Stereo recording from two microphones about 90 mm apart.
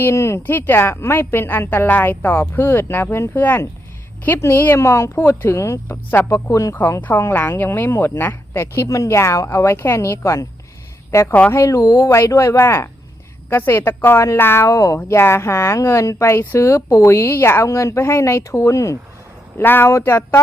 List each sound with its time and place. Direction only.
0.0 s a woman's voice: 30° left (ahead or behind)
7.0 s a woman's voice: 20° left (ahead or behind)
19.5 s a woman's voice: 25° left (ahead or behind)